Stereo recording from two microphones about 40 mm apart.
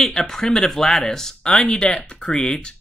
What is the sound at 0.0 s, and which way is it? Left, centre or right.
Speech, centre.